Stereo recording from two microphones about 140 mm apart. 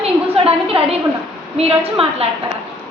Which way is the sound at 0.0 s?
45° right (ahead or behind).